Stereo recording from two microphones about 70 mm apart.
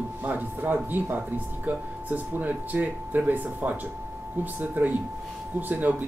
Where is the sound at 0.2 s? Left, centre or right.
Right.